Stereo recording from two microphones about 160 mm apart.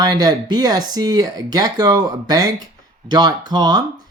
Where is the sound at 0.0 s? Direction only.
25° right (ahead or behind).